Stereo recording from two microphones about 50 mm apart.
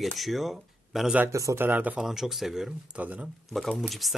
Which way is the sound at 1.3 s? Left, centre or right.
Right.